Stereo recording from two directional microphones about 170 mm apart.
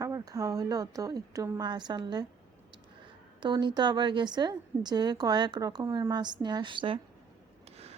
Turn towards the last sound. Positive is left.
turn(degrees=-40)  # may be behind; listen again after turning